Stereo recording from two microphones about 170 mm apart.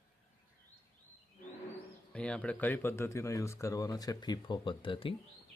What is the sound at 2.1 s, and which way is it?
Speech, 5° left (ahead or behind).